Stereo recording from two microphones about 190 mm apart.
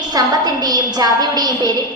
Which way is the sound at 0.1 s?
20° right (ahead or behind).